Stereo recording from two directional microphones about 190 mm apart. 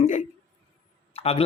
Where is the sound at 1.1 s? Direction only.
30° left (ahead or behind).